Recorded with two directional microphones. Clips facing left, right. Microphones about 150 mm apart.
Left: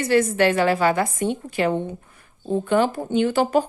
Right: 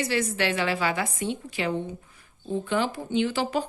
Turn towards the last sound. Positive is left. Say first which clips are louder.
# left 6 dB
turn(degrees=50)  # may be behind; listen again after turning